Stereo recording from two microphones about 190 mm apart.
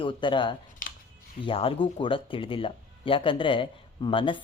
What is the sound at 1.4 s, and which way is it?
Speech, 30° left (ahead or behind).